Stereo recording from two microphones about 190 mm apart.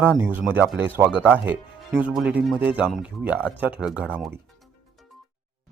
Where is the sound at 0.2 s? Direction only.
10° right (ahead or behind).